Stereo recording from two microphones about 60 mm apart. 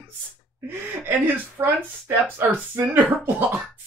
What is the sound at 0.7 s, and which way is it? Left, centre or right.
Speech, right.